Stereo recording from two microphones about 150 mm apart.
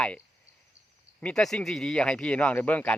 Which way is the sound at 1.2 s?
5° left (ahead or behind).